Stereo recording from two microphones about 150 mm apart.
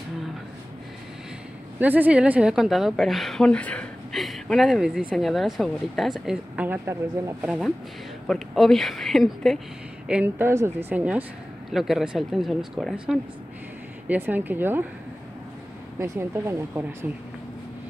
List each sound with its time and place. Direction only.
1.8 s a woman's voice: 10° right (ahead or behind)
7.4 s a woman's voice: centre (ahead or behind)
10.0 s a woman's voice: 10° right (ahead or behind)
16.0 s speech: 20° right (ahead or behind)